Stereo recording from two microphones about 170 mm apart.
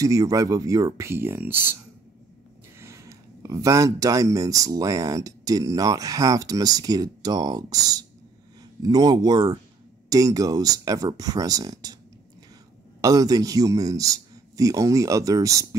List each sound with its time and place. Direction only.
0.0 s speech: 20° right (ahead or behind)
2.8 s speech: 15° right (ahead or behind)
13.0 s speech: 20° right (ahead or behind)